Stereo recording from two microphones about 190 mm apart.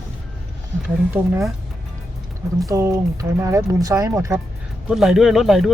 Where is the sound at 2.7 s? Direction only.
15° right (ahead or behind).